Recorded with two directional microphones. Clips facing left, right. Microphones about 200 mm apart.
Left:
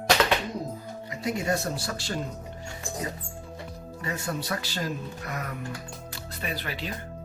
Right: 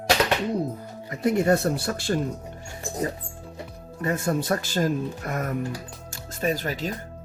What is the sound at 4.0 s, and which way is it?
Speech, 50° right (ahead or behind).